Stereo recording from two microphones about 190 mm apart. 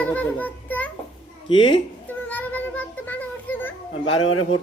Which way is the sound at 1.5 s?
25° left (ahead or behind).